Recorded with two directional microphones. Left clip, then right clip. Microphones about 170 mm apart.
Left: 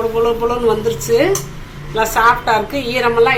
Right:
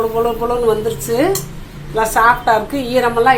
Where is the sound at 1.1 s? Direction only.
55° right (ahead or behind).